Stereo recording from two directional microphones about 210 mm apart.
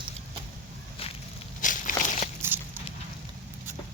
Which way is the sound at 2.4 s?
10° right (ahead or behind).